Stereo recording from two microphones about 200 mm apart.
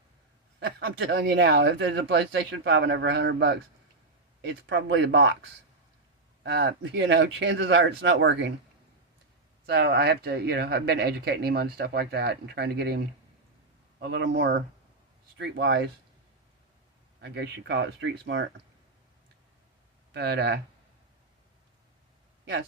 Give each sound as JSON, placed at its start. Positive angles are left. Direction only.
{"t": 0.6, "sound": "speech", "side_deg": -55}
{"t": 6.4, "sound": "speech", "side_deg": -55}
{"t": 9.6, "sound": "speech", "side_deg": -55}
{"t": 14.0, "sound": "speech", "side_deg": -60}
{"t": 17.2, "sound": "speech", "side_deg": -55}
{"t": 20.1, "sound": "speech", "side_deg": -55}